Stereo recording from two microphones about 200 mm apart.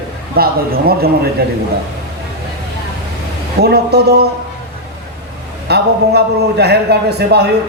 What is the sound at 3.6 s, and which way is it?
Speech, 55° right (ahead or behind).